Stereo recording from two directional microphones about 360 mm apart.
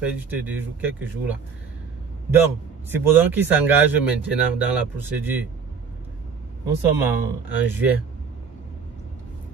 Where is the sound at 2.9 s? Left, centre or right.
Centre.